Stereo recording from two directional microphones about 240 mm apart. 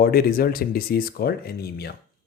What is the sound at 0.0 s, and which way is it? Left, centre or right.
Speech, left.